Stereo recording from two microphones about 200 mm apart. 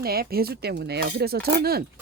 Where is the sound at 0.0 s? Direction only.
50° right (ahead or behind).